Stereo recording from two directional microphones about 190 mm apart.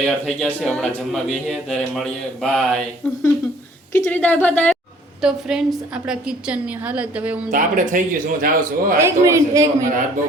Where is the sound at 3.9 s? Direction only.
10° left (ahead or behind).